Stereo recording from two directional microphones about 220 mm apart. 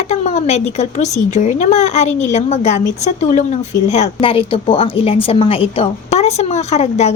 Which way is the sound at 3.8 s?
25° left (ahead or behind).